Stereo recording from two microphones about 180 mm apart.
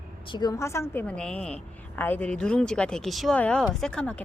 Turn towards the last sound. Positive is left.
turn(degrees=5)  # may be behind; listen again after turning